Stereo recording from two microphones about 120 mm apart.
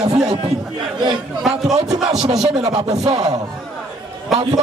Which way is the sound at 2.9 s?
60° right (ahead or behind).